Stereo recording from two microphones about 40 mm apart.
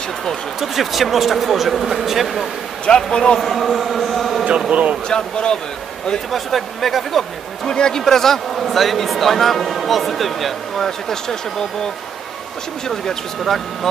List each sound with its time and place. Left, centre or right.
0.6 s speech: centre
3.1 s speech: centre
3.3 s speech: centre
4.6 s speech: right
5.0 s speech: left
6.3 s speech: centre
7.6 s speech: centre
8.0 s speech: centre
10.9 s speech: centre
12.8 s speech: centre